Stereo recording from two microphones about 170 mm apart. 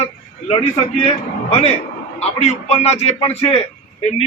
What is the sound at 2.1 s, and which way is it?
A man's voice, 40° left (ahead or behind).